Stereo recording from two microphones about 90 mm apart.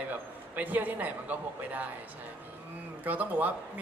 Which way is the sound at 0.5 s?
20° right (ahead or behind).